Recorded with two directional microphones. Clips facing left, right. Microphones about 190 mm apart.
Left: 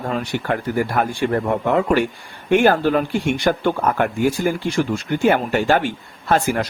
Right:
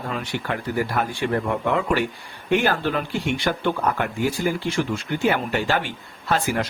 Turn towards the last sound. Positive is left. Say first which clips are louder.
# left 4 dB
turn(degrees=50)  # may be behind; listen again after turning